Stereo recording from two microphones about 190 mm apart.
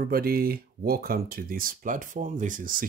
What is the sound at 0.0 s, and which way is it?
Speech, 50° right (ahead or behind).